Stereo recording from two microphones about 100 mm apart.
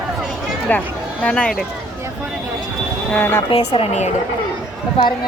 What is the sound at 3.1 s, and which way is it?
Speech, 20° left (ahead or behind).